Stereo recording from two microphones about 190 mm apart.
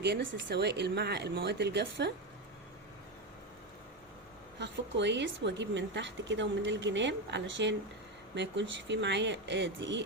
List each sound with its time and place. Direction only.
0.0 s speech: 70° right (ahead or behind)
4.6 s a woman's voice: 65° right (ahead or behind)